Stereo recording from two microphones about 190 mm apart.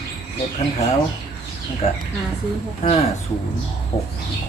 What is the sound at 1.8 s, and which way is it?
Speech, 35° left (ahead or behind).